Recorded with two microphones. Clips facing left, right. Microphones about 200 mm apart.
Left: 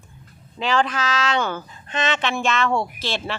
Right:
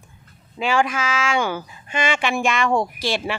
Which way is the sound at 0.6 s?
10° right (ahead or behind).